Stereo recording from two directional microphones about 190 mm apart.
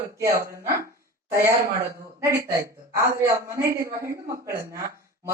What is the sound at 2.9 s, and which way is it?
A woman's voice, 15° right (ahead or behind).